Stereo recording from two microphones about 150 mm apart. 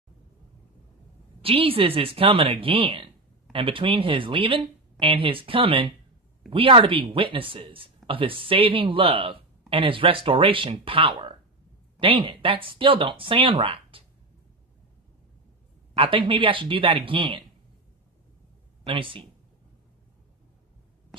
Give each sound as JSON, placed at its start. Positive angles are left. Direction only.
{"t": 1.4, "sound": "speech", "side_deg": -40}
{"t": 15.9, "sound": "speech", "side_deg": -35}
{"t": 18.9, "sound": "speech", "side_deg": -35}